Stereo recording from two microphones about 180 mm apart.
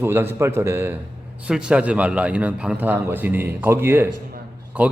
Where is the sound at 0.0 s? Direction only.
10° right (ahead or behind).